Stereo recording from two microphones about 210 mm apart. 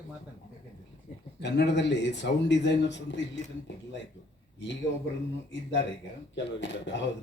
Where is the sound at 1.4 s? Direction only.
55° left (ahead or behind).